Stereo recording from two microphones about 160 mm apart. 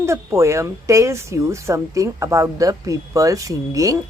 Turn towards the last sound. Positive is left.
turn(degrees=-20)  # may be behind; listen again after turning